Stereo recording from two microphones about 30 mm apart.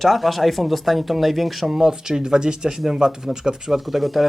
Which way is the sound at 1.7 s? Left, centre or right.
Centre.